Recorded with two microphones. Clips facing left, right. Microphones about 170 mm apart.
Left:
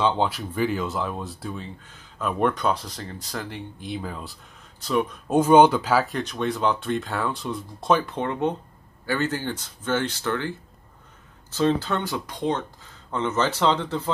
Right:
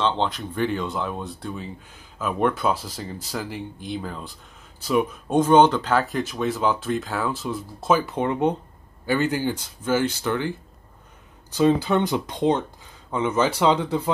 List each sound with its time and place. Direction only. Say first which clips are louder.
0.0 s speech: left 1 dB; 5° left (ahead or behind)
5.3 s speech: left 1 dB; 10° left (ahead or behind); by 10.5 s 15° right (ahead or behind)
11.5 s speech: right 4 dB; 10° right (ahead or behind)